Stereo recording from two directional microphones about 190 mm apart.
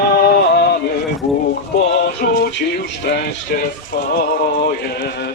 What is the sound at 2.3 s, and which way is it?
Music, 60° left (ahead or behind).